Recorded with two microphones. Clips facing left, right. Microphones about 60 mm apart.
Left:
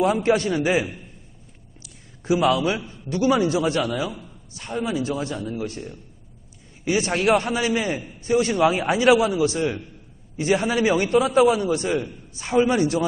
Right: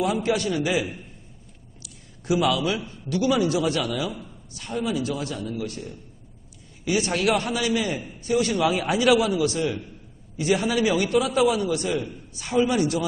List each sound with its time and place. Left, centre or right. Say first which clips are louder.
0.0 s a man's voice: left 4 dB; left